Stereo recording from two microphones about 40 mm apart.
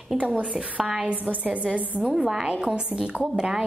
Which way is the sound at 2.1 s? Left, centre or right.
Centre.